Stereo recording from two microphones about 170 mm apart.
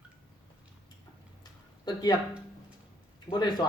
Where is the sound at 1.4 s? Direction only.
25° left (ahead or behind).